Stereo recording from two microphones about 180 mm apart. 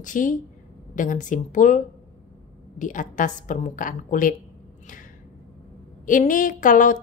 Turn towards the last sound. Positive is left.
turn(degrees=45)  # may be behind; listen again after turning